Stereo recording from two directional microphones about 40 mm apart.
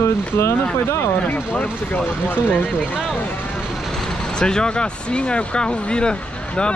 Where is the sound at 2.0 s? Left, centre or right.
Left.